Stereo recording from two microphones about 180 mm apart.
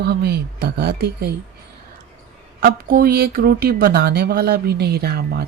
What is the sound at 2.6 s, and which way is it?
Speech, 65° right (ahead or behind).